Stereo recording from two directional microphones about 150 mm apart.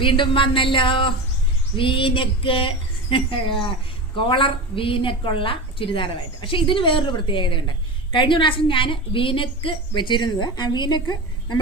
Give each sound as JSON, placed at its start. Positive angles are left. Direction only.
{"t": 0.0, "sound": "a woman's voice", "side_deg": 35}